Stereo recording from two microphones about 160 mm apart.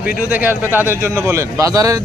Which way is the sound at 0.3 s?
10° right (ahead or behind).